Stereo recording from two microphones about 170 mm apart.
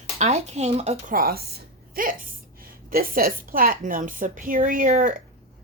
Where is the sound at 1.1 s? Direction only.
65° right (ahead or behind).